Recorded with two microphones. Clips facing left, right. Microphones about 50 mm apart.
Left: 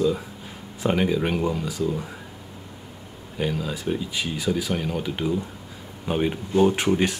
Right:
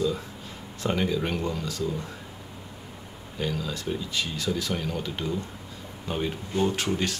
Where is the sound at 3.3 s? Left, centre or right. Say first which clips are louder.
Left 4 dB; centre.